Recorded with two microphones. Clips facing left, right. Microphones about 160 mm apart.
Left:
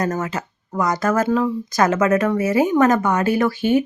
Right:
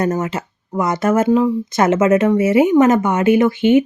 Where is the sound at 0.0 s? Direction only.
25° right (ahead or behind).